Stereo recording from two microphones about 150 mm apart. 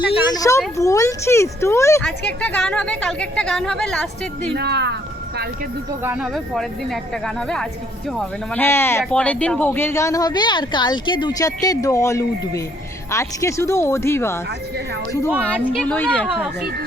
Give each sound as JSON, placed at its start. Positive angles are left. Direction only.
{"t": 0.3, "sound": "speech", "side_deg": 20}
{"t": 2.0, "sound": "a woman's voice", "side_deg": 5}
{"t": 4.5, "sound": "speech", "side_deg": -90}
{"t": 6.0, "sound": "speech", "side_deg": -15}
{"t": 6.2, "sound": "a woman's voice", "side_deg": 0}
{"t": 8.5, "sound": "speech", "side_deg": 15}
{"t": 15.4, "sound": "a woman's voice", "side_deg": 10}
{"t": 16.3, "sound": "speech", "side_deg": -5}